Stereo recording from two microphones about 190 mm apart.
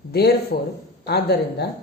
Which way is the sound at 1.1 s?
60° left (ahead or behind).